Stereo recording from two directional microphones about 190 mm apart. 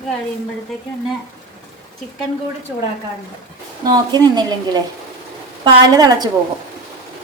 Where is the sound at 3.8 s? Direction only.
20° right (ahead or behind).